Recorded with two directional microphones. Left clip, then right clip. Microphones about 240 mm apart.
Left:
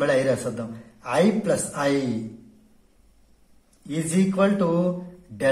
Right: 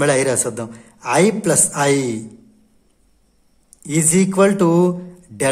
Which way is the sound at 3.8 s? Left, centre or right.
Right.